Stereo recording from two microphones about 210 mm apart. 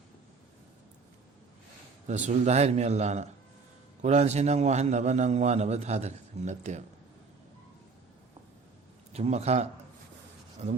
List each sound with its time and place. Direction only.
2.0 s a man's voice: 35° right (ahead or behind)
9.1 s a man's voice: 30° right (ahead or behind)